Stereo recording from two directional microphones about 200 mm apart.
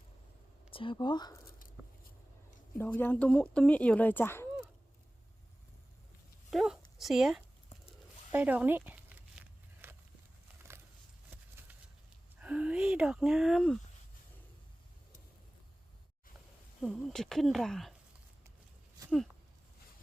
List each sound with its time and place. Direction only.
0.7 s speech: 25° left (ahead or behind)
2.7 s speech: 10° left (ahead or behind)
6.5 s a sound: centre (ahead or behind)
8.3 s speech: 10° right (ahead or behind)
9.8 s a sound: 10° right (ahead or behind)
12.4 s speech: 5° right (ahead or behind)
16.8 s speech: centre (ahead or behind)